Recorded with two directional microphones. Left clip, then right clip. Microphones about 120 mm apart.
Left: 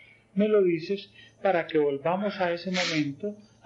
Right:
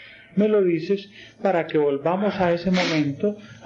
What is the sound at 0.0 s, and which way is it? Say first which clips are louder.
A man's voice: right 5 dB; 40° right (ahead or behind).